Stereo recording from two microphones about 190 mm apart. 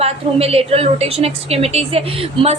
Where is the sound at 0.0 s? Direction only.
30° right (ahead or behind).